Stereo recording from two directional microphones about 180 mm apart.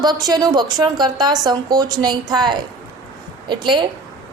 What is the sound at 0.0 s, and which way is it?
A woman's voice, 20° right (ahead or behind).